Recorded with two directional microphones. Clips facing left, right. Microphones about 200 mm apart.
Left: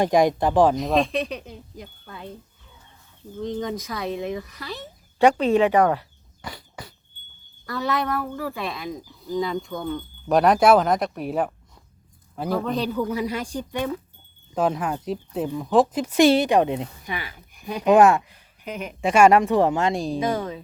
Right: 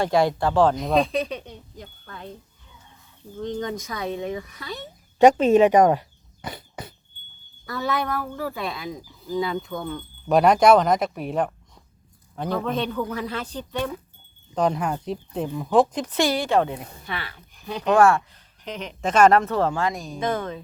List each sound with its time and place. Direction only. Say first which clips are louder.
0.0 s a woman's voice: left 2 dB; 15° left (ahead or behind)
0.8 s speech: even; centre (ahead or behind)
3.4 s speech: left 1 dB; centre (ahead or behind)
5.2 s a sound: right 3 dB; 20° right (ahead or behind)
7.7 s a woman's voice: left 1 dB; centre (ahead or behind)
16.2 s a woman's voice: left 5 dB; 20° left (ahead or behind)
20.1 s a woman's voice: left 2 dB; 10° left (ahead or behind)